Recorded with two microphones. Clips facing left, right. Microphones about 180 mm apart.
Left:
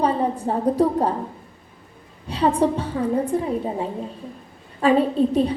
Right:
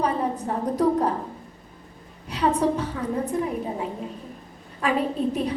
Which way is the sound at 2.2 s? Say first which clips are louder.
Left 3 dB; 30° left (ahead or behind).